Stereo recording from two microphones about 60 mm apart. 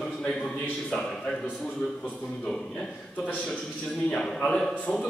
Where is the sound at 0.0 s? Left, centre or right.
Centre.